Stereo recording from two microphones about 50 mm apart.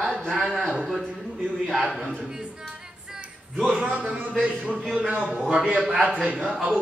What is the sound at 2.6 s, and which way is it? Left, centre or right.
Music, centre.